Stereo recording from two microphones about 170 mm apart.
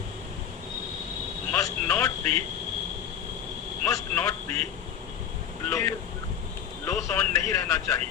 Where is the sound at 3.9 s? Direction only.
20° left (ahead or behind).